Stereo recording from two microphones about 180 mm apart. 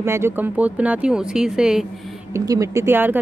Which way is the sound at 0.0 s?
15° right (ahead or behind).